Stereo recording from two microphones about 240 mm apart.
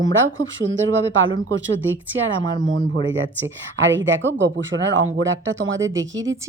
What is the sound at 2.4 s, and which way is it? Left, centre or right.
Speech, centre.